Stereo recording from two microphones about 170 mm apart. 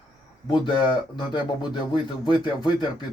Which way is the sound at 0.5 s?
25° left (ahead or behind).